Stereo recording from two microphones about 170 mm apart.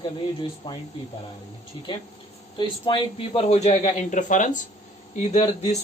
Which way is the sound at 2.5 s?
30° left (ahead or behind).